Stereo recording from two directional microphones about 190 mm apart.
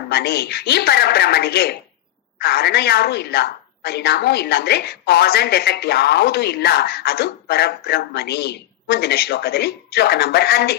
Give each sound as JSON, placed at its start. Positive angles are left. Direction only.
{"t": 0.1, "sound": "a woman's voice", "side_deg": 55}